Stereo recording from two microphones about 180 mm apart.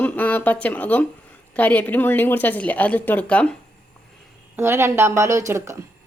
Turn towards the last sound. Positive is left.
turn(degrees=-15)  # may be behind; listen again after turning